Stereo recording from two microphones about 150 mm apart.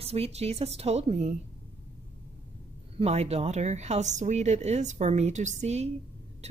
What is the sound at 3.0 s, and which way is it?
A woman's voice, 45° right (ahead or behind).